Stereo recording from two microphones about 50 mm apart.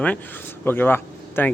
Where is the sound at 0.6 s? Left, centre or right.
Left.